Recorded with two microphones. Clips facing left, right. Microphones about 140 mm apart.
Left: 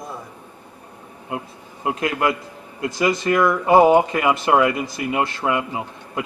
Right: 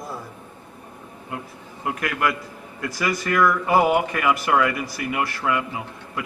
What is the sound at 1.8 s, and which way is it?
Speech, 25° left (ahead or behind).